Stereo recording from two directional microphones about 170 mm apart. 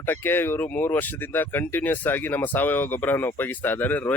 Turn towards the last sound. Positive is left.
turn(degrees=10)  # may be behind; listen again after turning